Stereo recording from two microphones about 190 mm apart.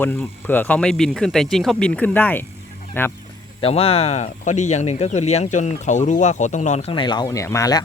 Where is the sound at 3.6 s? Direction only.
30° left (ahead or behind).